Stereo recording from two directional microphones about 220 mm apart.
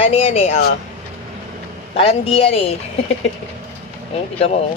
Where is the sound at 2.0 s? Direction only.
25° left (ahead or behind).